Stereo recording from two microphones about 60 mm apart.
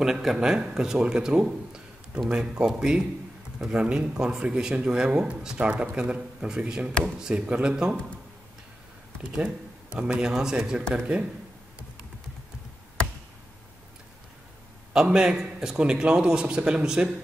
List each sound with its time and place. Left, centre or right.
0.0 s speech: centre
9.2 s speech: centre
10.8 s speech: centre
14.9 s speech: centre